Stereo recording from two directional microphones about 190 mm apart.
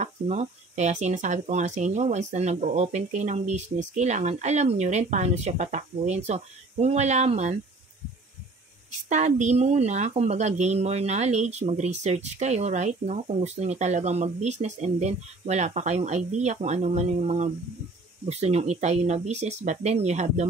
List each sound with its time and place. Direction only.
0.0 s a woman's voice: 35° right (ahead or behind)
9.1 s a woman's voice: 40° right (ahead or behind)